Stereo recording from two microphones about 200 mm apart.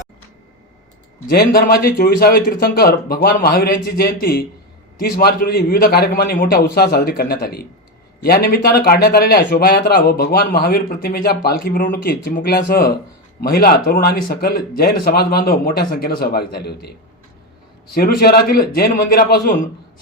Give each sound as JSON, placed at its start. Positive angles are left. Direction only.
{"t": 1.3, "sound": "a man's voice", "side_deg": 50}
{"t": 17.9, "sound": "a man's voice", "side_deg": 50}